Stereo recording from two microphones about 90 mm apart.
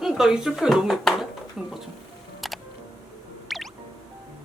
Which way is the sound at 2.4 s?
Centre (ahead or behind).